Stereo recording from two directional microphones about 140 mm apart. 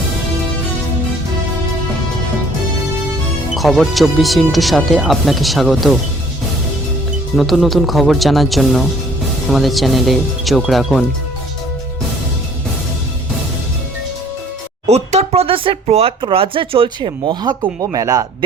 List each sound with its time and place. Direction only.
3.5 s speech: centre (ahead or behind)
7.3 s speech: centre (ahead or behind)
14.8 s speech: 50° right (ahead or behind); by 18.3 s 25° right (ahead or behind)